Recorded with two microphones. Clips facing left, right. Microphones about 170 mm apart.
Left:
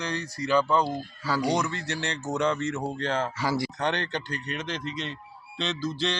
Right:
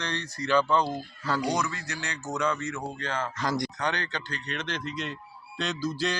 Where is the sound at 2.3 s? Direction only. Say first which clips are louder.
Left 3 dB; 30° left (ahead or behind).